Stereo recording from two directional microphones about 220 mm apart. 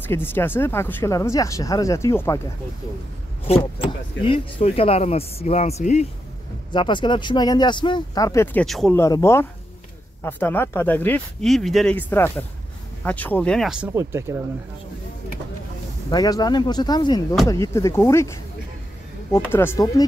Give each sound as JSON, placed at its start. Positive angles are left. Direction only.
{"t": 0.0, "sound": "speech", "side_deg": 10}
{"t": 3.4, "sound": "speech", "side_deg": 25}
{"t": 8.6, "sound": "speech", "side_deg": 0}
{"t": 9.0, "sound": "speech", "side_deg": 15}
{"t": 16.1, "sound": "speech", "side_deg": 15}